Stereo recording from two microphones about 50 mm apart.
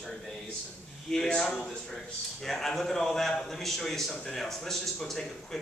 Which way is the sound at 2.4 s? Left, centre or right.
Centre.